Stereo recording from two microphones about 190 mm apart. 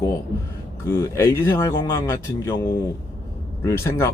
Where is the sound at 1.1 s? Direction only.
15° left (ahead or behind).